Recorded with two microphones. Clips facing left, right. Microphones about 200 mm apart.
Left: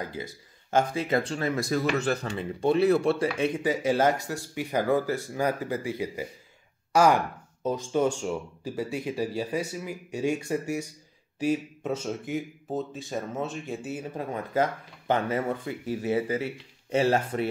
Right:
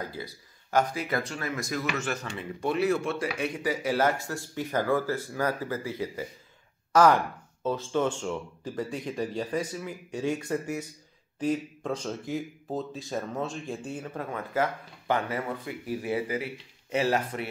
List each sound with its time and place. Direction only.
0.1 s speech: 25° left (ahead or behind); by 13.9 s centre (ahead or behind)
14.0 s speech: 20° left (ahead or behind)